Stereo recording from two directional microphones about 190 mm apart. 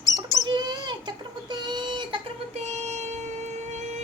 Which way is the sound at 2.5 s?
35° right (ahead or behind).